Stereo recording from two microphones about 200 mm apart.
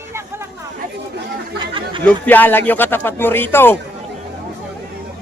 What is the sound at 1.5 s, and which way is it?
Chatter, 25° right (ahead or behind).